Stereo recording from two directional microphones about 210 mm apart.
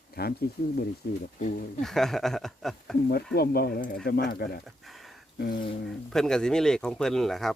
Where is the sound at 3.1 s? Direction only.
50° left (ahead or behind).